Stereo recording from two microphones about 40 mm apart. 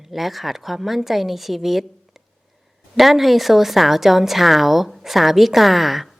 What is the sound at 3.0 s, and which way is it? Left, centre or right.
Speech, centre.